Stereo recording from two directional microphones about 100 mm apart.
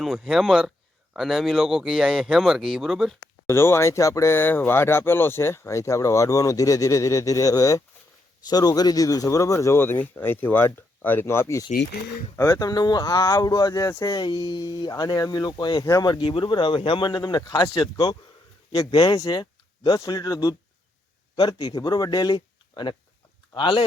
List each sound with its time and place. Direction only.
0.0 s a man's voice: 5° right (ahead or behind)
3.5 s speech: 25° left (ahead or behind)
21.8 s speech: 40° left (ahead or behind)